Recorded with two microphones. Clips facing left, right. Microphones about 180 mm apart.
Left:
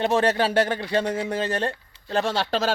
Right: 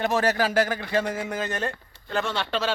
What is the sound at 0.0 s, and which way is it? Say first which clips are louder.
A man's voice: left 2 dB; 30° left (ahead or behind).